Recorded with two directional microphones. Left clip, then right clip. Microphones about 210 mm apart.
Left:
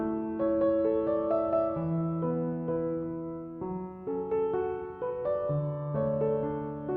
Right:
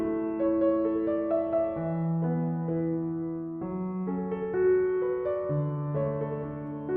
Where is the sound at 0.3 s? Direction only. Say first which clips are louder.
Even; centre (ahead or behind).